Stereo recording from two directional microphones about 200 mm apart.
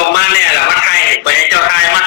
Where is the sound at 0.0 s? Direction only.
55° left (ahead or behind).